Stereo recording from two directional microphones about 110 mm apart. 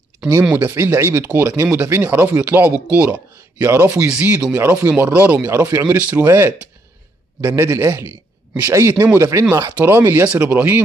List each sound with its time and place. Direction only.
0.4 s a man's voice: 15° right (ahead or behind)